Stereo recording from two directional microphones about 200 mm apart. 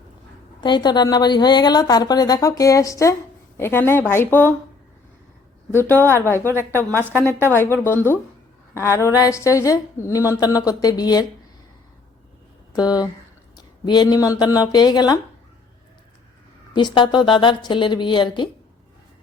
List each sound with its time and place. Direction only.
0.6 s a woman's voice: 20° left (ahead or behind)
5.7 s a woman's voice: 10° left (ahead or behind)
12.7 s a woman's voice: 20° left (ahead or behind)
16.7 s a woman's voice: 25° left (ahead or behind)